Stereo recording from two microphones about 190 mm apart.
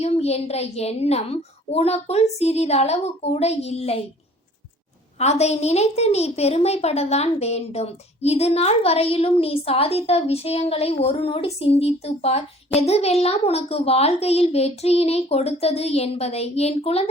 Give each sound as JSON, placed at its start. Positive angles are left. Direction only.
{"t": 0.0, "sound": "a woman's voice", "side_deg": 35}
{"t": 5.2, "sound": "a woman's voice", "side_deg": 35}